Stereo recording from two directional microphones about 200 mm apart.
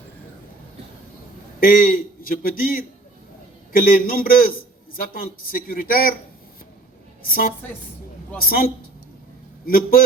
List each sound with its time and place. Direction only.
1.5 s a man's voice: 45° left (ahead or behind)
7.2 s speech: 45° left (ahead or behind)